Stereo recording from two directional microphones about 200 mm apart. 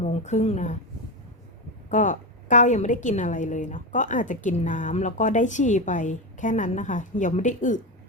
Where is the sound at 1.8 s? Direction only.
35° left (ahead or behind).